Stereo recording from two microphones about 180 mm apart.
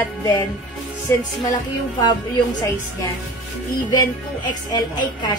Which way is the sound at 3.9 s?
20° left (ahead or behind).